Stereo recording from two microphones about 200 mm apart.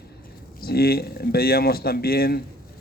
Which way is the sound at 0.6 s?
50° left (ahead or behind).